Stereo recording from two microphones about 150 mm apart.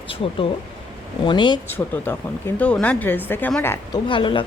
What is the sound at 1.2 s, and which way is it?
Speech, 30° left (ahead or behind).